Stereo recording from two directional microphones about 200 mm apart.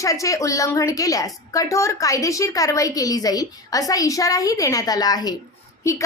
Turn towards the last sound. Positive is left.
turn(degrees=15)  # may be behind; listen again after turning